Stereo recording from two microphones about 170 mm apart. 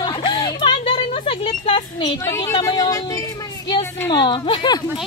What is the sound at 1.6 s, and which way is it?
Speech, 30° left (ahead or behind).